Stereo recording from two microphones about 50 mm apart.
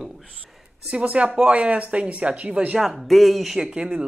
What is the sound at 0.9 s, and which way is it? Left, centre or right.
Speech, right.